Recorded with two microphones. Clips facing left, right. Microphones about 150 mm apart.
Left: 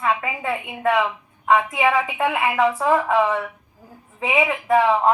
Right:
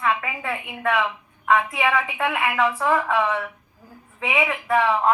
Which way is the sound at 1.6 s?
15° left (ahead or behind).